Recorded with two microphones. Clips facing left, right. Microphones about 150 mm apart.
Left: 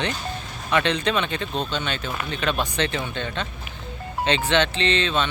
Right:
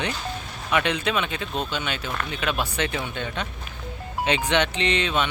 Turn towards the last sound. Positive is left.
turn(degrees=-10)  # may be behind; listen again after turning